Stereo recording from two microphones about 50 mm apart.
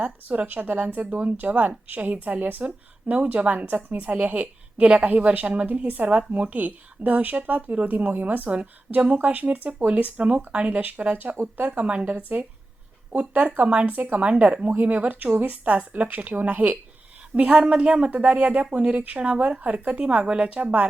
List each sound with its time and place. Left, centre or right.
0.0 s speech: right
11.8 s speech: right
17.3 s speech: right